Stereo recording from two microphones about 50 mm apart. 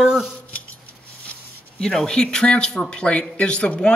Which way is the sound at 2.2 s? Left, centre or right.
Left.